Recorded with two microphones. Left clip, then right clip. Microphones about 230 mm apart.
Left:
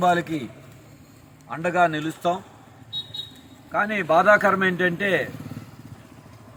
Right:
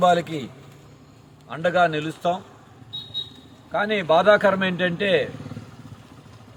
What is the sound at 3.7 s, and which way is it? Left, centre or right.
A man's voice, right.